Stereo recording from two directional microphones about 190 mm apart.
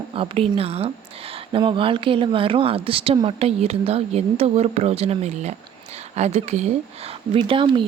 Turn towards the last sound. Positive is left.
turn(degrees=-25)  # may be behind; listen again after turning